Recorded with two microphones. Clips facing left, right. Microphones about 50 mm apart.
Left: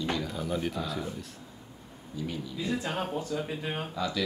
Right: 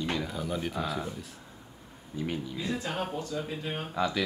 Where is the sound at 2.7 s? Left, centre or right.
Centre.